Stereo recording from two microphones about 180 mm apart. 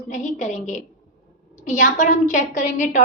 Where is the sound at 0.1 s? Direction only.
40° left (ahead or behind).